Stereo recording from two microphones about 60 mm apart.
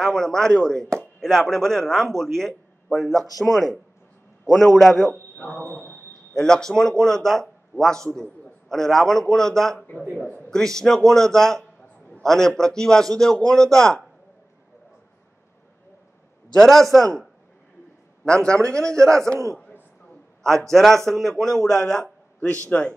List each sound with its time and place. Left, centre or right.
0.0 s a man's voice: centre
5.7 s a man's voice: left
6.3 s a man's voice: centre
16.5 s speech: centre
18.2 s a man's voice: centre
19.2 s a man's voice: right
20.7 s a man's voice: centre
22.7 s a man's voice: left